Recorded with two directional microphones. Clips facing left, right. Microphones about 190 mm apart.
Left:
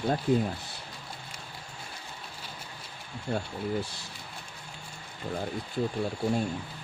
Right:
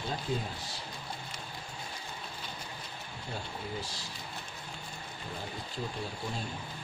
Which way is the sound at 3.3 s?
60° left (ahead or behind).